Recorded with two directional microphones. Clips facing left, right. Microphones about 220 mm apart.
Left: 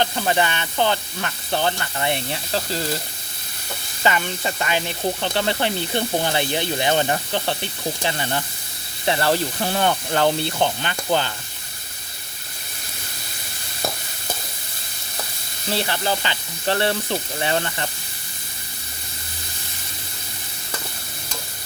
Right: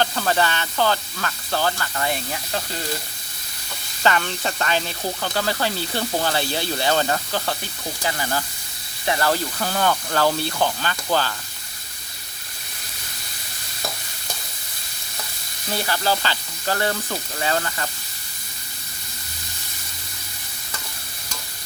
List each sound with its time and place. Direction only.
0.0 s speech: 20° left (ahead or behind)
4.0 s speech: 15° left (ahead or behind)
15.7 s speech: 25° left (ahead or behind)